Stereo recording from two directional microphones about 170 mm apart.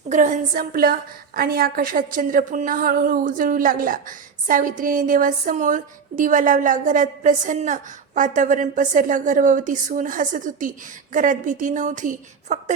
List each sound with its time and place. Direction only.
0.1 s a woman's voice: 45° right (ahead or behind)